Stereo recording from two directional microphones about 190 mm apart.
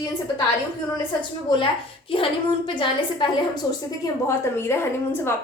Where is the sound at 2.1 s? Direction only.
25° left (ahead or behind).